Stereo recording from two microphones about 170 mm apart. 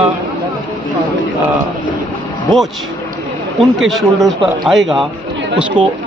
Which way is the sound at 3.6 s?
Centre (ahead or behind).